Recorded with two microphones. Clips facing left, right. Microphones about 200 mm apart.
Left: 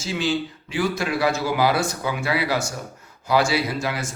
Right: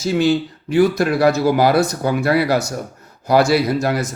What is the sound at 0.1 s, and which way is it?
A man's voice, 60° right (ahead or behind).